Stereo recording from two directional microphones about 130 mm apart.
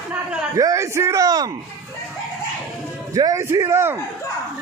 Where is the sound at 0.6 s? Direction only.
25° right (ahead or behind).